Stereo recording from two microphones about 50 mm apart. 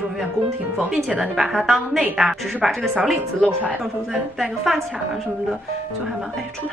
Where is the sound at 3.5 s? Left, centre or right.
Right.